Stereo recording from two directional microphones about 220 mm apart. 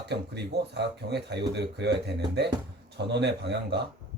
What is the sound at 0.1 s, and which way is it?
Speech, 50° right (ahead or behind).